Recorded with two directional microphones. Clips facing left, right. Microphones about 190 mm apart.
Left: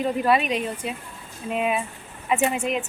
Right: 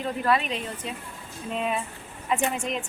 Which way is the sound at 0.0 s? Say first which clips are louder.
Left 4 dB; 15° left (ahead or behind).